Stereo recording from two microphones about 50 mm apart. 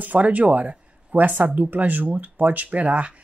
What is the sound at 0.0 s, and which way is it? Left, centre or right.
Speech, right.